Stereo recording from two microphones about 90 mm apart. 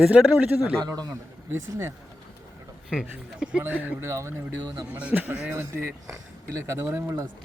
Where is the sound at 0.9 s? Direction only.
45° right (ahead or behind).